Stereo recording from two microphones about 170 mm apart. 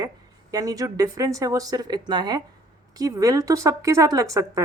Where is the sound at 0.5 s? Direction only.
20° right (ahead or behind).